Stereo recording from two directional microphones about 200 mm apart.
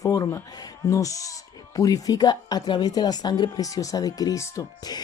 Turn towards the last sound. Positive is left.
turn(degrees=15)  # may be behind; listen again after turning